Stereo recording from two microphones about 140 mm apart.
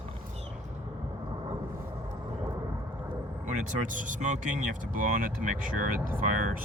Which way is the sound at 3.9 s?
65° right (ahead or behind).